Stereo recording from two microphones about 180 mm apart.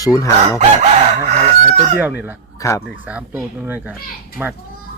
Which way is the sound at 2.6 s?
15° left (ahead or behind).